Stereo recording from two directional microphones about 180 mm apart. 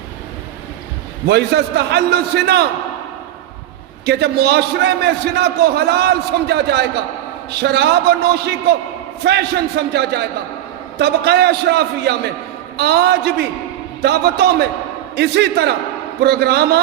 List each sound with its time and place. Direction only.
1.3 s a man's voice: 65° right (ahead or behind)
4.0 s a man's voice: 65° right (ahead or behind)